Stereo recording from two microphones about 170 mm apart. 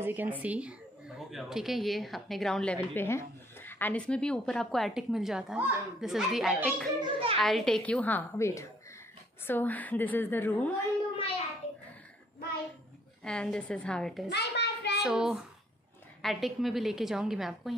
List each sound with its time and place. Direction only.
0.0 s a woman's voice: 10° right (ahead or behind)
7.0 s a sound: 30° right (ahead or behind)
7.3 s a woman's voice: centre (ahead or behind)
13.2 s a woman's voice: 5° left (ahead or behind)
14.3 s a sound: 80° left
15.0 s a woman's voice: 5° right (ahead or behind)